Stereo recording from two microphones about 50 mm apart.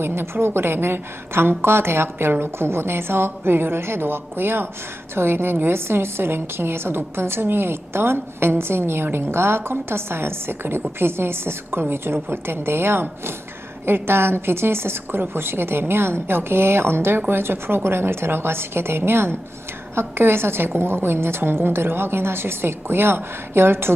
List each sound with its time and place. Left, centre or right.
0.0 s a woman's voice: right